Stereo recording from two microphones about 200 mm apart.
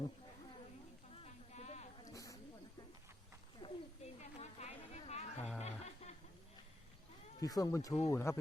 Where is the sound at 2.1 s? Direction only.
15° left (ahead or behind).